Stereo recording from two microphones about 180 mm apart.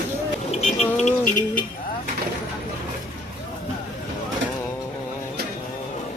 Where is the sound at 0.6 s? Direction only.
35° left (ahead or behind).